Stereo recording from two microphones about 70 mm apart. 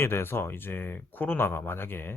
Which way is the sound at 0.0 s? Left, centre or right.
Left.